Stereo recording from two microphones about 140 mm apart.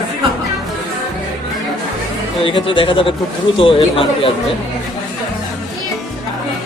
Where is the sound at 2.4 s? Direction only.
40° left (ahead or behind).